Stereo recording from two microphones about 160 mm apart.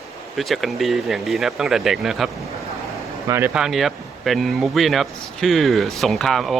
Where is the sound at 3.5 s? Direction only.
Centre (ahead or behind).